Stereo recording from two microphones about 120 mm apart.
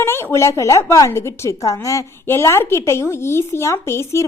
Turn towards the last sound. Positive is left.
turn(degrees=25)  # may be behind; listen again after turning